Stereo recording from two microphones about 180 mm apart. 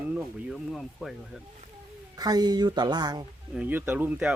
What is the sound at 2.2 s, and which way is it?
Speech, 20° right (ahead or behind).